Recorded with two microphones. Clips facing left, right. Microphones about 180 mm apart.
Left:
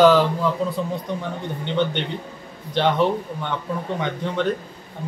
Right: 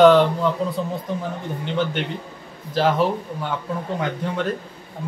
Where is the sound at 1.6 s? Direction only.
5° right (ahead or behind).